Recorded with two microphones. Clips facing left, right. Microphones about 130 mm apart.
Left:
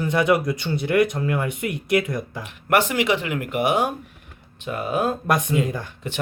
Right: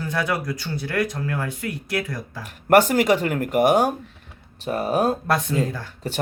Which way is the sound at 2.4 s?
40° right (ahead or behind).